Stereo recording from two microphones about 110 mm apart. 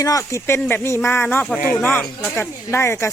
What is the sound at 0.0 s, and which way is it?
Speech, 30° left (ahead or behind).